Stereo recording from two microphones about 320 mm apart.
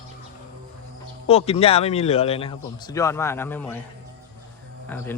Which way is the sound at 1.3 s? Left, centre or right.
Centre.